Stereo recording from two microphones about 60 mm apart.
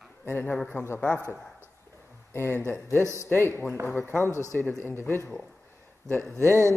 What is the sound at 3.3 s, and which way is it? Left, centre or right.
Speech, left.